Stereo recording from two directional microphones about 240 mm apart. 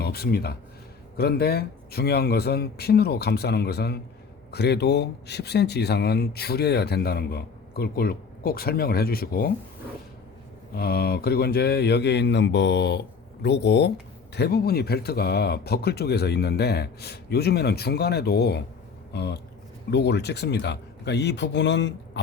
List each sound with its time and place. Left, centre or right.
0.0 s speech: left
10.8 s speech: left